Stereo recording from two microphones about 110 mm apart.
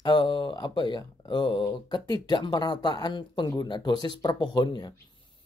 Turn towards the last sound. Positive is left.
turn(degrees=45)  # may be behind; listen again after turning